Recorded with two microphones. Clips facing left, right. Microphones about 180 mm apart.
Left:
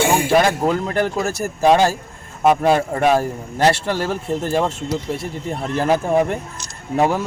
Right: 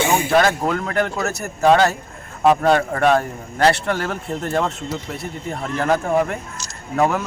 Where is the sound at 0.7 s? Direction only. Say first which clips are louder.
Left 1 dB; 25° left (ahead or behind).